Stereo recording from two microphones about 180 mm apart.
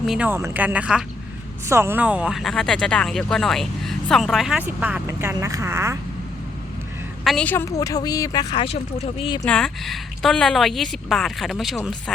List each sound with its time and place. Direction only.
0.0 s speech: centre (ahead or behind)
0.3 s speech: 15° right (ahead or behind)
7.3 s a woman's voice: 5° left (ahead or behind); by 9.4 s 30° left (ahead or behind)
9.4 s a woman's voice: 5° left (ahead or behind)